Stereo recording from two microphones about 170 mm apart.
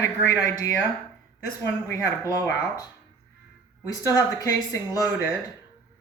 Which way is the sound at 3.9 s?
20° left (ahead or behind).